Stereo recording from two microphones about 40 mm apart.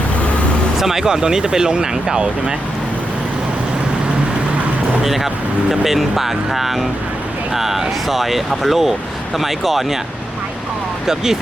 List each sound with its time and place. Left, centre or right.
0.8 s speech: centre
5.0 s speech: centre
11.0 s speech: centre